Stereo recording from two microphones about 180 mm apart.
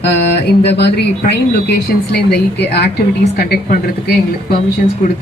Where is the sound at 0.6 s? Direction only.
70° left (ahead or behind).